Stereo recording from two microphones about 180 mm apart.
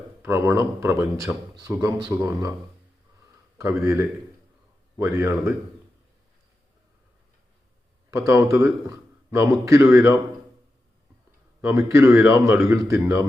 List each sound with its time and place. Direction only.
0.2 s speech: 15° right (ahead or behind)
3.6 s speech: 15° right (ahead or behind)
8.3 s speech: 15° right (ahead or behind)
11.6 s speech: 15° right (ahead or behind)